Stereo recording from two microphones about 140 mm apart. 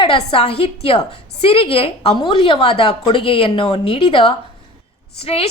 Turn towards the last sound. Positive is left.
turn(degrees=45)  # may be behind; listen again after turning